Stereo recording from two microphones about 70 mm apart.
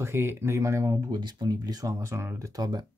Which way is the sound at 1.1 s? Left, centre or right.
Right.